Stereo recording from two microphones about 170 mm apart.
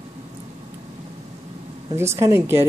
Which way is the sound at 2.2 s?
15° right (ahead or behind).